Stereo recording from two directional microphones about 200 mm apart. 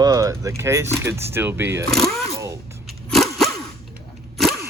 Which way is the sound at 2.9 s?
Centre (ahead or behind).